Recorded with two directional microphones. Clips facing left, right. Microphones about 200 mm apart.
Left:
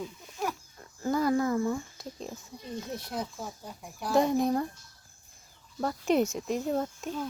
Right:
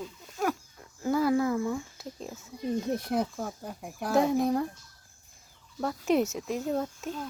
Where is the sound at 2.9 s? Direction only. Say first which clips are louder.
Right 6 dB; 55° right (ahead or behind).